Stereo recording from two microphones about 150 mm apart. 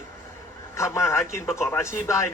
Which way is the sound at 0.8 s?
20° left (ahead or behind).